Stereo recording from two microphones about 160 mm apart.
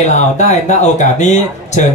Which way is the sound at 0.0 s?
45° left (ahead or behind).